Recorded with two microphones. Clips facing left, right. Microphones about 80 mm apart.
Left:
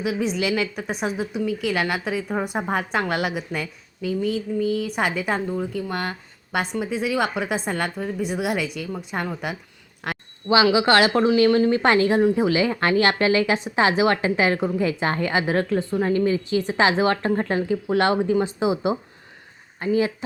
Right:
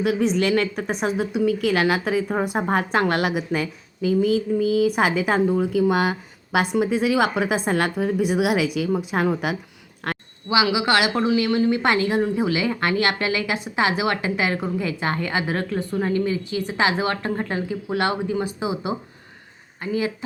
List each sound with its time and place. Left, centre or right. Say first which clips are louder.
0.2 s a woman's voice: right 3 dB; centre
10.5 s a woman's voice: left 3 dB; left